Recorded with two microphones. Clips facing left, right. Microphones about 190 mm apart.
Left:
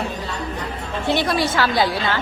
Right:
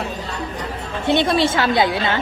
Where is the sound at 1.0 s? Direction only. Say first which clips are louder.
Right 3 dB; 20° right (ahead or behind).